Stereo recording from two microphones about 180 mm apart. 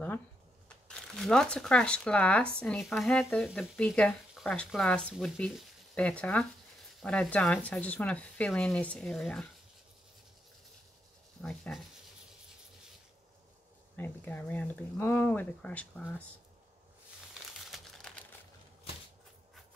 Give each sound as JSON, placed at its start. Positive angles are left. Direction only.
{"t": 0.8, "sound": "speech", "side_deg": 5}
{"t": 11.4, "sound": "speech", "side_deg": 5}
{"t": 13.9, "sound": "speech", "side_deg": 10}
{"t": 17.3, "sound": "crumpling", "side_deg": 0}